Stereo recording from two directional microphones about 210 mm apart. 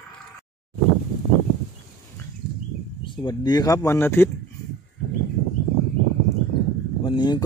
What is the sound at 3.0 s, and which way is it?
Speech, 20° left (ahead or behind).